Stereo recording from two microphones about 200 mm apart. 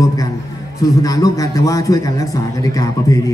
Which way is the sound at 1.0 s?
15° left (ahead or behind).